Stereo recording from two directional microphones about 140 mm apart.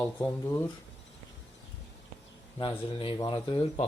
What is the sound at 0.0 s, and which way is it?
Speech, 15° left (ahead or behind).